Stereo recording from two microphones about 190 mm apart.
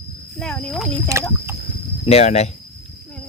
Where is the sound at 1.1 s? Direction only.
15° right (ahead or behind).